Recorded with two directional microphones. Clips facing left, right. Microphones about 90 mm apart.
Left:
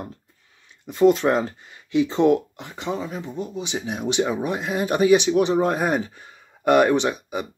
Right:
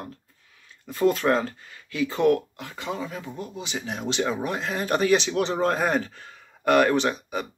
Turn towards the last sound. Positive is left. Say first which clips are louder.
# left 2 dB
turn(degrees=15)  # may be behind; listen again after turning